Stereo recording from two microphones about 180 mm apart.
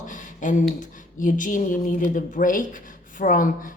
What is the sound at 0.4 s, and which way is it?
Speech, 45° left (ahead or behind).